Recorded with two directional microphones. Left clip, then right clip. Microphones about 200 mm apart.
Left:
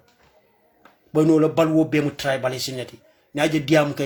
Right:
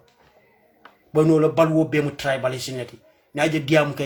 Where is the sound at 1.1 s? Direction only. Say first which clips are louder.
Even; 30° left (ahead or behind).